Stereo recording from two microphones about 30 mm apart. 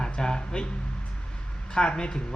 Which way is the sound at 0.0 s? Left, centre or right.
Left.